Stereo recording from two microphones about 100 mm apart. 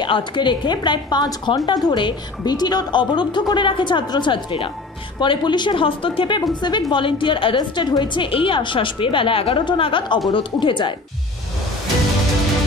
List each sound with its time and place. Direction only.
0.0 s a woman's voice: 55° left (ahead or behind)